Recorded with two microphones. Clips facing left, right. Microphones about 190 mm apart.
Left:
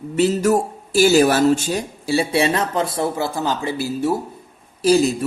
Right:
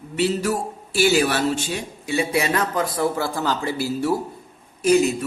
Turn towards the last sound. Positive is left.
turn(degrees=35)  # may be behind; listen again after turning